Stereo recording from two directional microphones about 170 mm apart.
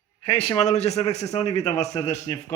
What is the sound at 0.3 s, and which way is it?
Speech, 35° left (ahead or behind).